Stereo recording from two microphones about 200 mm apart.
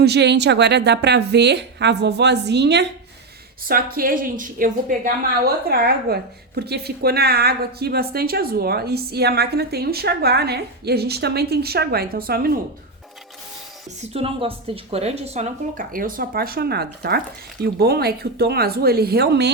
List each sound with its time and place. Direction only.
0.0 s a woman's voice: 55° right (ahead or behind)
3.7 s a woman's voice: 45° right (ahead or behind)
14.1 s a woman's voice: 30° right (ahead or behind); by 19.5 s 55° right (ahead or behind)